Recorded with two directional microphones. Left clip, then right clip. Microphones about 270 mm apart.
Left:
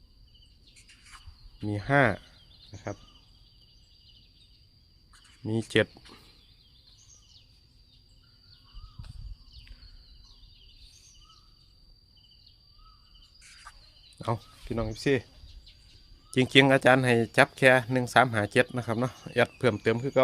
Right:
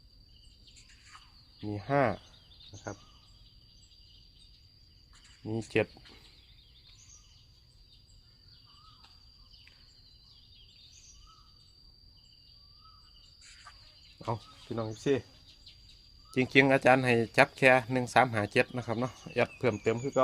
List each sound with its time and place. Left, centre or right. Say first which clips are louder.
1.6 s speech: left 4 dB; left
5.4 s speech: left 5 dB; left
13.4 s fowl: left 3 dB; centre
14.2 s speech: left 4 dB; left
16.3 s speech: left 4 dB; left